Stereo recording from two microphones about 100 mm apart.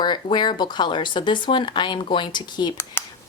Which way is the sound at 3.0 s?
20° left (ahead or behind).